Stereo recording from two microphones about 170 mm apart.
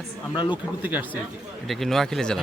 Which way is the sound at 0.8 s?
10° right (ahead or behind).